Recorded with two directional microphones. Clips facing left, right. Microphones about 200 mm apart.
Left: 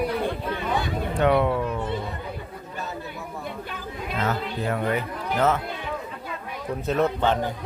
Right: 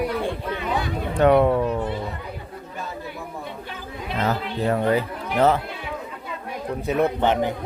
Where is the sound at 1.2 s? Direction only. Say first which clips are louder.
Right 5 dB; 40° right (ahead or behind).